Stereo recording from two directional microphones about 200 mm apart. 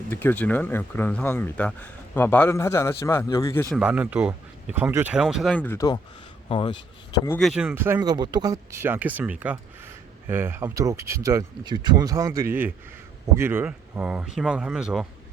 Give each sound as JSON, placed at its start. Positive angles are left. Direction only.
{"t": 0.1, "sound": "speech", "side_deg": 10}
{"t": 3.8, "sound": "speech", "side_deg": -5}
{"t": 7.3, "sound": "speech", "side_deg": 0}